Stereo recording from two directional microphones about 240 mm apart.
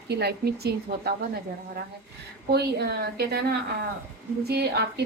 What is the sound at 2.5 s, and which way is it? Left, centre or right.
A woman's voice, right.